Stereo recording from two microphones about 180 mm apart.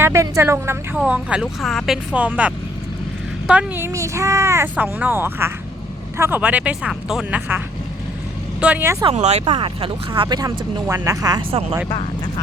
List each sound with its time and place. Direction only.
0.0 s speech: 15° right (ahead or behind)
8.6 s speech: 10° right (ahead or behind)
9.0 s speech: 40° right (ahead or behind); by 11.4 s 20° right (ahead or behind)